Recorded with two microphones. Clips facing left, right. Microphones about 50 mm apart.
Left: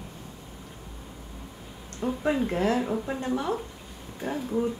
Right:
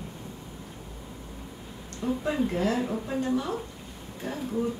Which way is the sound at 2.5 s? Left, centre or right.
Left.